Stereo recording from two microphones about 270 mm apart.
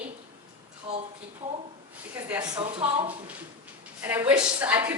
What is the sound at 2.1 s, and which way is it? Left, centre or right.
Speech, centre.